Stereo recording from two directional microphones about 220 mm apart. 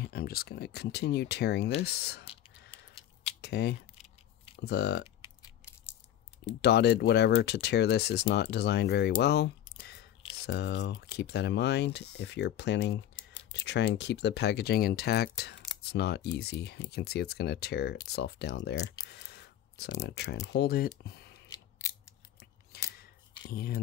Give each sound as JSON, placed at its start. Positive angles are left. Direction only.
{"t": 0.0, "sound": "speech", "side_deg": 45}
{"t": 3.3, "sound": "a sound", "side_deg": 50}
{"t": 4.6, "sound": "speech", "side_deg": 50}
{"t": 6.6, "sound": "speech", "side_deg": 50}
{"t": 22.4, "sound": "scissors", "side_deg": 45}
{"t": 23.4, "sound": "speech", "side_deg": 45}